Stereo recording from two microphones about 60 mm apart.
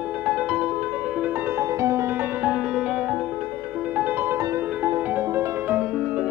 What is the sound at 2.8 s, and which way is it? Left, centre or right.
Music, centre.